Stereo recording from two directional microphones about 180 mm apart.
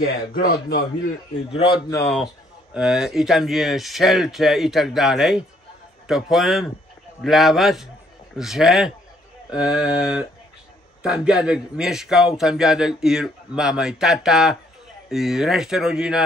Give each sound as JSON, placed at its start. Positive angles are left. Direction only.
{"t": 0.0, "sound": "speech", "side_deg": 55}
{"t": 1.5, "sound": "speech", "side_deg": 30}
{"t": 2.7, "sound": "a man's voice", "side_deg": -5}